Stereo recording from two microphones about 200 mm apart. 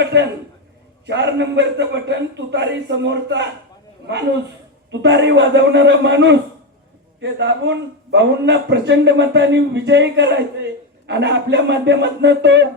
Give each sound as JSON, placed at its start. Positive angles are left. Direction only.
{"t": 0.0, "sound": "a man's voice", "side_deg": -60}
{"t": 4.9, "sound": "a man's voice", "side_deg": -60}